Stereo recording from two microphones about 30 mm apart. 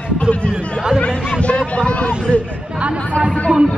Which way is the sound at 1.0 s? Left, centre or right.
Left.